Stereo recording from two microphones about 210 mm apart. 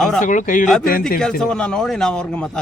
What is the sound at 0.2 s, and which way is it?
Speech, 40° left (ahead or behind).